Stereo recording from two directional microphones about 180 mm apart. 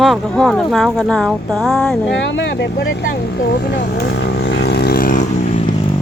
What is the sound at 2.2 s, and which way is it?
Speech, 80° left.